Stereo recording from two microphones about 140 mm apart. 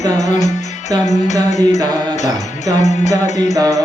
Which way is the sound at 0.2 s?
55° left (ahead or behind).